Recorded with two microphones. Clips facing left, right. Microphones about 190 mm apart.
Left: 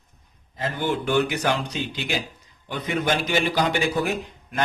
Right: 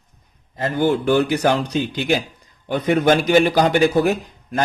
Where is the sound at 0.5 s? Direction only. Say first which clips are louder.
Right 7 dB; 40° right (ahead or behind).